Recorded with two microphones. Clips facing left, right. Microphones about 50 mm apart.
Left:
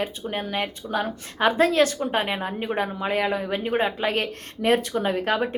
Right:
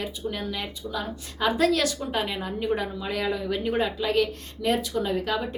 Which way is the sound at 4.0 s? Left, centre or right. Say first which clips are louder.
Right 1 dB; left.